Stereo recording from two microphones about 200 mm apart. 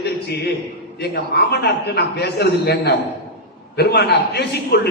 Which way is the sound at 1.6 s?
55° left (ahead or behind).